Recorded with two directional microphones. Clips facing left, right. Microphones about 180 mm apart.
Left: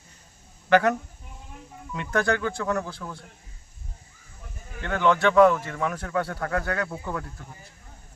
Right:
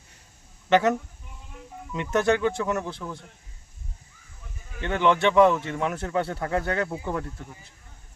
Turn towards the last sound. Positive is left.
turn(degrees=-20)  # may be behind; listen again after turning